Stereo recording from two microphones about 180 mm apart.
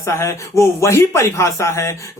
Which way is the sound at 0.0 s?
15° left (ahead or behind).